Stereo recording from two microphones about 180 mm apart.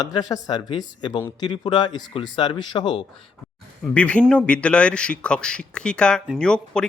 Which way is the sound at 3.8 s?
5° left (ahead or behind).